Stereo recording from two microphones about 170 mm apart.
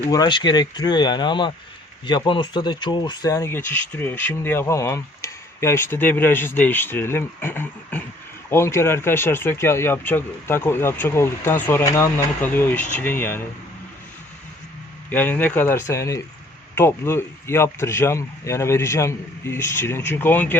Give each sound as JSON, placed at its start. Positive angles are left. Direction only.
{"t": 0.1, "sound": "speech", "side_deg": 25}
{"t": 15.1, "sound": "speech", "side_deg": 10}